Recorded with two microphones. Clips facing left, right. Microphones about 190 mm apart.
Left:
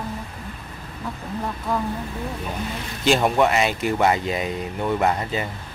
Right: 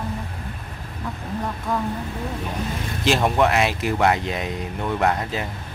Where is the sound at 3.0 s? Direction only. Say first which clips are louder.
Left 1 dB; centre (ahead or behind).